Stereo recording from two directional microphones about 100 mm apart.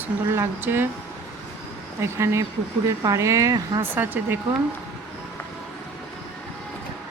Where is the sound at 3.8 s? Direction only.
20° right (ahead or behind).